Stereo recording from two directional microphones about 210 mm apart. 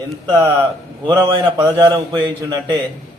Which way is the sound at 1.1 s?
20° right (ahead or behind).